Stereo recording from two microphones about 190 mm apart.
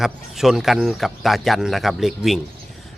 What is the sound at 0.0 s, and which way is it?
Speech, centre (ahead or behind).